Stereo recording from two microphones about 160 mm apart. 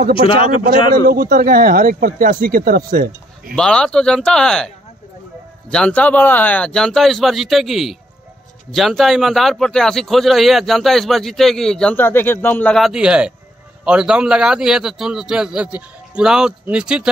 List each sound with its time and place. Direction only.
0.3 s speech: 35° left (ahead or behind)
1.0 s speech: 75° right (ahead or behind)
3.5 s a man's voice: 5° left (ahead or behind)
5.7 s a man's voice: 5° left (ahead or behind)